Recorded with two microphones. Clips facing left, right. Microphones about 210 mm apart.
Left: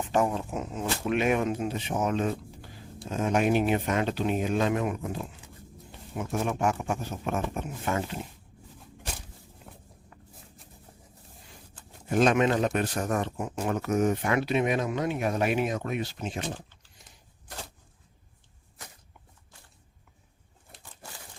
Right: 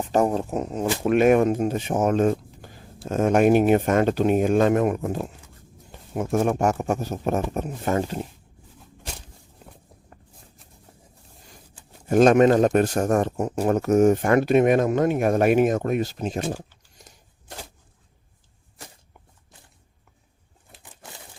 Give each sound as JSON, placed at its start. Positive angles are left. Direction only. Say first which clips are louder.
{"t": 0.0, "sound": "speech", "louder": "right 5 dB", "side_deg": -40}
{"t": 10.1, "sound": "a sound", "louder": "right 3 dB", "side_deg": -45}
{"t": 12.0, "sound": "speech", "louder": "right 8 dB", "side_deg": -45}
{"t": 20.8, "sound": "crumpling", "louder": "right 2 dB", "side_deg": -20}